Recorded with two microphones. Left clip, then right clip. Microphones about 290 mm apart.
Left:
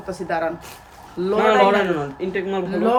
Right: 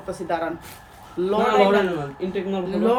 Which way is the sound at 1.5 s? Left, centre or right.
Left.